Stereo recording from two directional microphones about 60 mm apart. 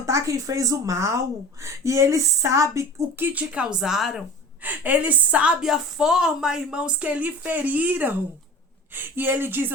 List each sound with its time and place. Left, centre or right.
0.0 s speech: right
3.2 s speech: right
3.8 s speech: centre
4.6 s a woman's voice: right